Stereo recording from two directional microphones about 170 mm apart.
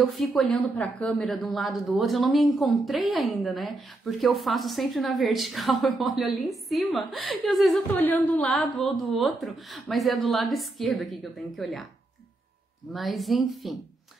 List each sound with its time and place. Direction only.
0.0 s speech: centre (ahead or behind)
8.0 s speech: 10° left (ahead or behind)
12.9 s speech: centre (ahead or behind)